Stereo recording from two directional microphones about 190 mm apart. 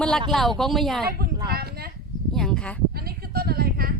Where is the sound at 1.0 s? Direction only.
55° right (ahead or behind).